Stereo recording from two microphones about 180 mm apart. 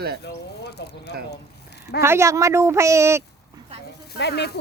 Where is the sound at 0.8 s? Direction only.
65° left (ahead or behind).